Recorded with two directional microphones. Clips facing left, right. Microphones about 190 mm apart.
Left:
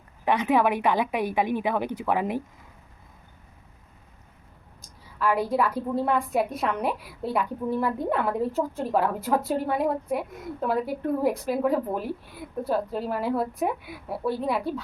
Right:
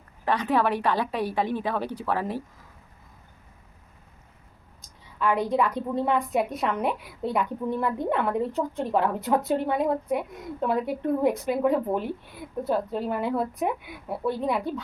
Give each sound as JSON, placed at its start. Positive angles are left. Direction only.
{"t": 0.3, "sound": "a woman's voice", "side_deg": 15}
{"t": 5.2, "sound": "a woman's voice", "side_deg": 5}